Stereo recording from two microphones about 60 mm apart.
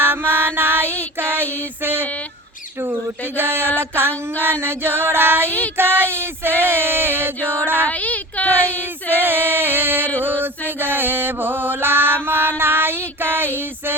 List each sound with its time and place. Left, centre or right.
0.1 s music: right
0.9 s child singing: left
1.4 s a sound: right
3.3 s mantra: right
5.5 s child singing: left
5.7 s a sound: right
6.1 s mantra: right
6.6 s a sound: right
6.9 s chant: right
7.7 s female singing: left
9.1 s music: right
10.4 s mantra: right